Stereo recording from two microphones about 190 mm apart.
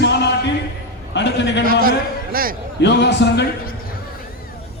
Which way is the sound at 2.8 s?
65° left (ahead or behind).